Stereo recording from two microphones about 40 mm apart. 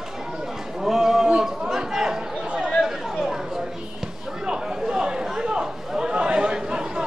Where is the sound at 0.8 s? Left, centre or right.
Centre.